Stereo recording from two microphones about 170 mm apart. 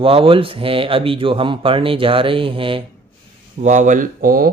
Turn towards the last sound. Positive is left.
turn(degrees=-55)  # may be behind; listen again after turning